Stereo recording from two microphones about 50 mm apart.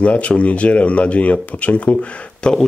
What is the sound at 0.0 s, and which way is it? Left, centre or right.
Speech, left.